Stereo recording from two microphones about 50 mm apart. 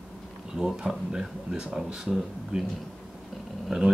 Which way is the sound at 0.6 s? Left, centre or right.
Centre.